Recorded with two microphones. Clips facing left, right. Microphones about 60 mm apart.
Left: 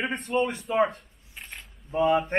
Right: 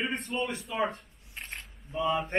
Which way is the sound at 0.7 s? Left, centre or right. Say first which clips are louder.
Left 9 dB; left.